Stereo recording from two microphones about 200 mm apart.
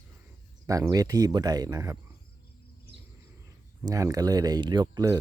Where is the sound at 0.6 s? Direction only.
15° right (ahead or behind).